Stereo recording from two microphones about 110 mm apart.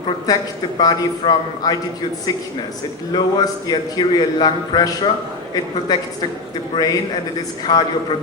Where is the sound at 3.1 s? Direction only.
40° left (ahead or behind).